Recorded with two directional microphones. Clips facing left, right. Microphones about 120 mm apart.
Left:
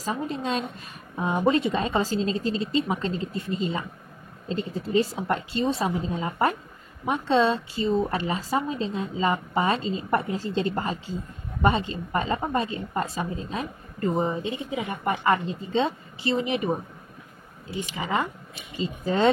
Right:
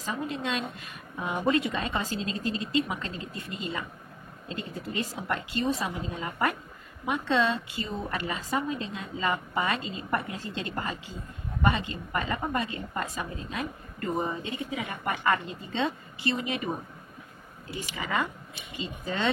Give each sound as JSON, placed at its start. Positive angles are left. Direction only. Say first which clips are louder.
{"t": 0.0, "sound": "a woman's voice", "louder": "left 3 dB", "side_deg": 35}
{"t": 17.7, "sound": "a woman's voice", "louder": "left 3 dB", "side_deg": 30}
{"t": 18.8, "sound": "a woman's voice", "louder": "left 7 dB", "side_deg": 40}